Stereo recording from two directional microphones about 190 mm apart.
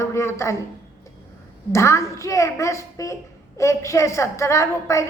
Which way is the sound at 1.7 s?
15° left (ahead or behind).